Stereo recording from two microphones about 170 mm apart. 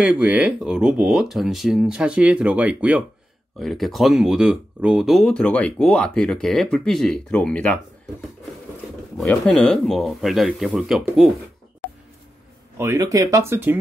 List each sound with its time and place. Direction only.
0.0 s speech: 10° right (ahead or behind)
9.2 s speech: 5° left (ahead or behind)
12.7 s speech: 15° right (ahead or behind)